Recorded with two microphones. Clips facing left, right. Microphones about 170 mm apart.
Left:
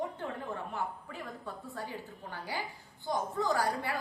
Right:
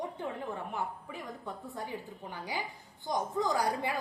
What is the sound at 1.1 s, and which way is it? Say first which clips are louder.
A woman's voice: right 1 dB; 15° right (ahead or behind).